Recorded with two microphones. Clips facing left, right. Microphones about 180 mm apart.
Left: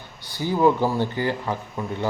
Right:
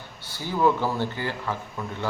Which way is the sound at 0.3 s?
15° left (ahead or behind).